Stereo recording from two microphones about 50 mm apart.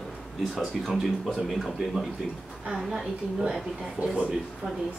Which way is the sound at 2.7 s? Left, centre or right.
Centre.